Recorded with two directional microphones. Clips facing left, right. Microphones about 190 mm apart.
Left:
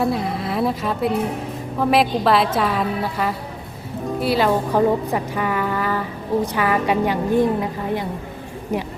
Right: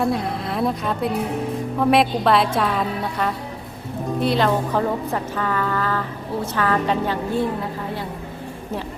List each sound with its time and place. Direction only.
0.0 s a woman's voice: centre (ahead or behind)